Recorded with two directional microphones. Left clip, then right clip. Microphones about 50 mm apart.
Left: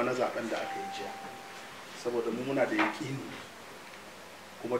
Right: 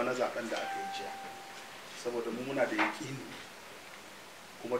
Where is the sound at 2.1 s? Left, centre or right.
Centre.